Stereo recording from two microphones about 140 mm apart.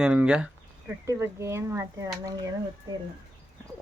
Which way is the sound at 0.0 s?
10° right (ahead or behind).